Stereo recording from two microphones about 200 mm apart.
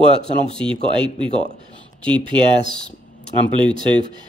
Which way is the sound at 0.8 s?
25° right (ahead or behind).